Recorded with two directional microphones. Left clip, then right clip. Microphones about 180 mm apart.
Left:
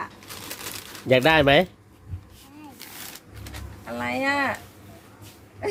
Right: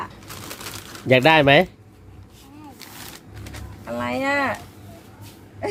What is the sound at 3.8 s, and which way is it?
Speech, 30° right (ahead or behind).